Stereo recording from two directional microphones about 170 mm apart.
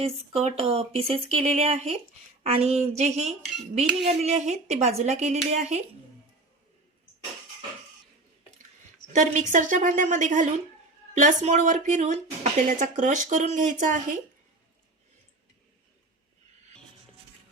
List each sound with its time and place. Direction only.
0.0 s speech: 35° right (ahead or behind)
9.1 s speech: 45° right (ahead or behind)